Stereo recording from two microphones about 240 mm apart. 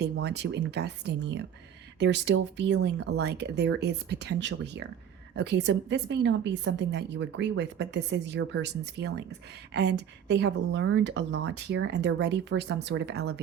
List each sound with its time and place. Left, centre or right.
0.0 s a woman's voice: right